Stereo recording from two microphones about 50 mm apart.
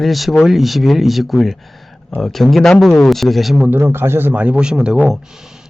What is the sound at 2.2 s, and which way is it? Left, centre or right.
Speech, centre.